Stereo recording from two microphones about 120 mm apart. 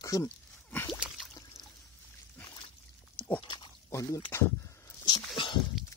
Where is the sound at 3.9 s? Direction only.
25° left (ahead or behind).